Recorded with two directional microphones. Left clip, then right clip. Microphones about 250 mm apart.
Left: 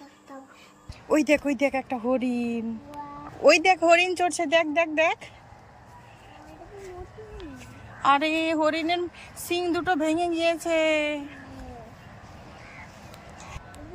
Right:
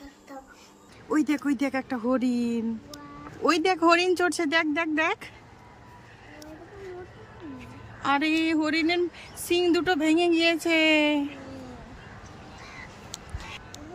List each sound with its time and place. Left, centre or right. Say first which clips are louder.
1.3 s speech: left 4 dB; centre
4.3 s speech: left 2 dB; right
4.7 s speech: left 3 dB; centre
8.0 s speech: left 3 dB; centre